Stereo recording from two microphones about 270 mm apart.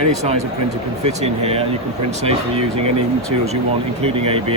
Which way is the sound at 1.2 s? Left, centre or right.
Right.